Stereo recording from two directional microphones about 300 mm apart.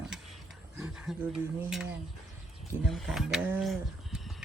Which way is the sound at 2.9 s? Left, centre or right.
Centre.